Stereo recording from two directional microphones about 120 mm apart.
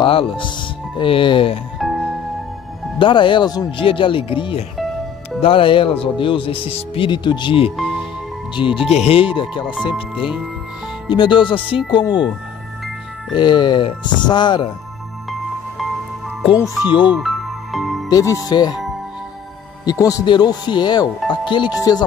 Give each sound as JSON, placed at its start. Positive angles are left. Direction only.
{"t": 0.0, "sound": "speech", "side_deg": 45}
{"t": 1.8, "sound": "music", "side_deg": -5}
{"t": 3.0, "sound": "speech", "side_deg": 45}
{"t": 4.7, "sound": "music", "side_deg": 0}
{"t": 5.4, "sound": "speech", "side_deg": 50}
{"t": 7.7, "sound": "speech", "side_deg": 0}
{"t": 8.5, "sound": "speech", "side_deg": 45}
{"t": 9.9, "sound": "speech", "side_deg": -5}
{"t": 11.1, "sound": "speech", "side_deg": 40}
{"t": 13.4, "sound": "speech", "side_deg": 40}
{"t": 17.2, "sound": "music", "side_deg": 0}
{"t": 18.1, "sound": "speech", "side_deg": 30}
{"t": 19.8, "sound": "speech", "side_deg": 30}